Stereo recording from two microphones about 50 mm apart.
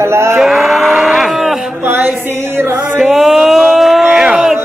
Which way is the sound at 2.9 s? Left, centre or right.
Centre.